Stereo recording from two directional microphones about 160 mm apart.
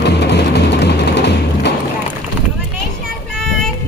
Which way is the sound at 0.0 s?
90° left.